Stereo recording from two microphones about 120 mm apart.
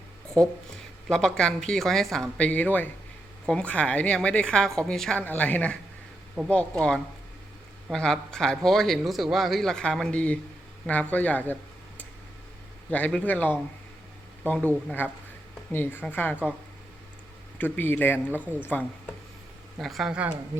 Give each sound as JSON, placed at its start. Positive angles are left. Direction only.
{"t": 0.4, "sound": "a woman's voice", "side_deg": 5}
{"t": 12.9, "sound": "a woman's voice", "side_deg": 10}
{"t": 17.6, "sound": "a woman's voice", "side_deg": 15}
{"t": 19.8, "sound": "a man's voice", "side_deg": 0}